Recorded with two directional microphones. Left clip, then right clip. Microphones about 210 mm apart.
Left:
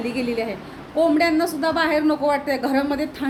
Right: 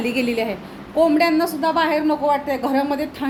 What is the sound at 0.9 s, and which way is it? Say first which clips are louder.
A woman's voice: right 2 dB; 10° right (ahead or behind).